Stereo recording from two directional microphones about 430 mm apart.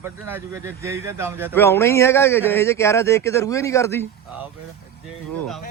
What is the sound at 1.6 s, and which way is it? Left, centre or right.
Speech, centre.